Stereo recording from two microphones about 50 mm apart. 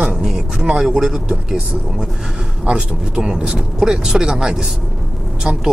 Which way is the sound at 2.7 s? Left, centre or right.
Centre.